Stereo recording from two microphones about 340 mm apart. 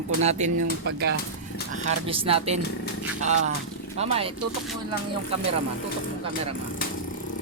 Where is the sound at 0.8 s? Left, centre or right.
Right.